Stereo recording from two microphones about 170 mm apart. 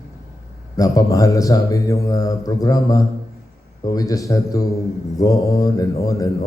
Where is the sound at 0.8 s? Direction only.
20° left (ahead or behind).